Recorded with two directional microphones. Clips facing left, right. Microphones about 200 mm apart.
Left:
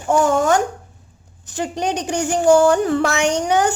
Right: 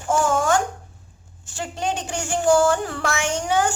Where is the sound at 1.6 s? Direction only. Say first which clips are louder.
Left 5 dB; 15° left (ahead or behind).